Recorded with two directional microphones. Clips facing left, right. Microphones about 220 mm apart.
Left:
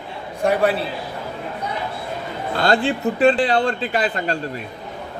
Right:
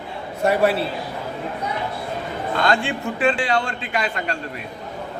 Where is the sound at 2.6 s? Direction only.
35° left (ahead or behind).